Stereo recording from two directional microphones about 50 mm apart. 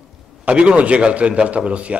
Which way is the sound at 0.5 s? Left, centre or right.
Right.